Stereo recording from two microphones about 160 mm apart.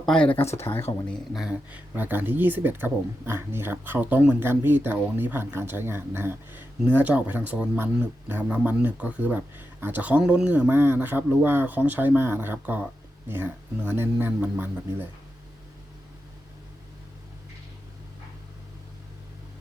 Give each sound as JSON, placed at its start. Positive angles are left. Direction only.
{"t": 0.0, "sound": "speech", "side_deg": 5}
{"t": 1.3, "sound": "speech", "side_deg": -5}